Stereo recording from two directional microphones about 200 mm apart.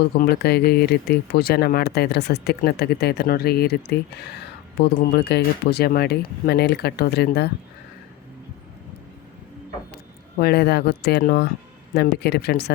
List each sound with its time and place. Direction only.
0.0 s speech: 50° left (ahead or behind)
9.9 s speech: 55° left (ahead or behind)